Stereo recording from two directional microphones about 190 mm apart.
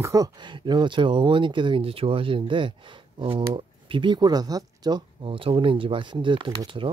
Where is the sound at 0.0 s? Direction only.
15° right (ahead or behind).